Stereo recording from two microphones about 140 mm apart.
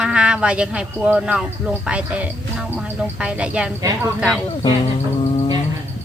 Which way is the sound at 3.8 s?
25° right (ahead or behind).